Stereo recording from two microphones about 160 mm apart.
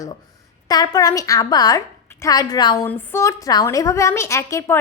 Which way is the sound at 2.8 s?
15° left (ahead or behind).